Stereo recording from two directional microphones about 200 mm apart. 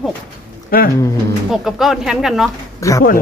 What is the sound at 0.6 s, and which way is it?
Speech, 45° left (ahead or behind).